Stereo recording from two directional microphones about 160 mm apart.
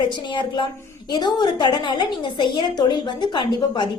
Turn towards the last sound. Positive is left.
turn(degrees=30)  # may be behind; listen again after turning